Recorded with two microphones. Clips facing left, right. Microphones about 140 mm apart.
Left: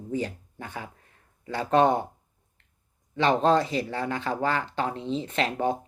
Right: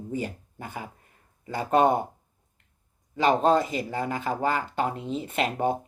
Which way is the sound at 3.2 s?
5° right (ahead or behind).